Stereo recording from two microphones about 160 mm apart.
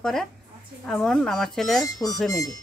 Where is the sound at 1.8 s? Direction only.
20° left (ahead or behind).